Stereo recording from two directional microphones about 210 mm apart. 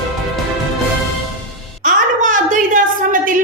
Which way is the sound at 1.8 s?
40° right (ahead or behind).